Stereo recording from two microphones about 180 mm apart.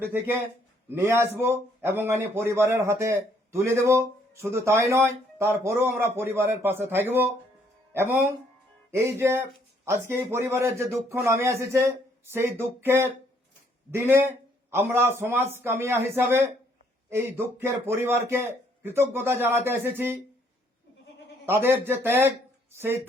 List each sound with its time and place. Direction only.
0.9 s a man's voice: 15° right (ahead or behind)
21.4 s a man's voice: 10° right (ahead or behind)